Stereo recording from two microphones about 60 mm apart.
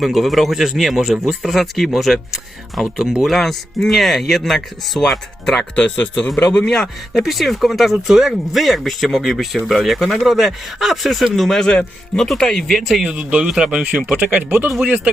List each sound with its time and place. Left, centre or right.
0.0 s speech: centre
3.3 s speech: centre
7.2 s speech: centre
13.0 s speech: centre
14.3 s speech: right